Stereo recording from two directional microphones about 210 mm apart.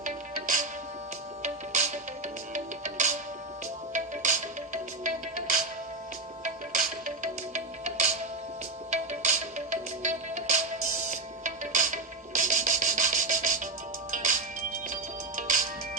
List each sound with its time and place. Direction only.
0.0 s music: 40° right (ahead or behind)
6.7 s music: 40° right (ahead or behind)